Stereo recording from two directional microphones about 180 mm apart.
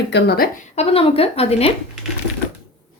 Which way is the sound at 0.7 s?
35° left (ahead or behind).